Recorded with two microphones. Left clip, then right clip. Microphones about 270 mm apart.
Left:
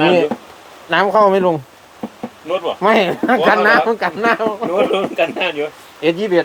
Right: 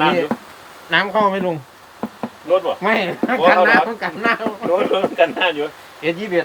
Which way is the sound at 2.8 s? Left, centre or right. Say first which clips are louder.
Left 5 dB; left.